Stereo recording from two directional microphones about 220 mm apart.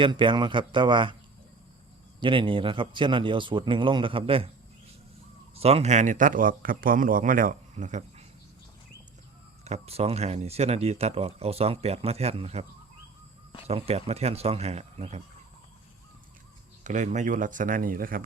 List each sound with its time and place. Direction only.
0.0 s speech: 20° right (ahead or behind)
2.2 s speech: 25° right (ahead or behind)
5.5 s a man's voice: 30° right (ahead or behind)
9.6 s speech: 30° right (ahead or behind)
13.7 s speech: 25° right (ahead or behind)
16.8 s a man's voice: 35° right (ahead or behind)